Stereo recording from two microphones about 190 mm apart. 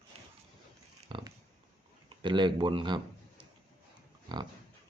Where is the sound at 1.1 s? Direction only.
25° right (ahead or behind).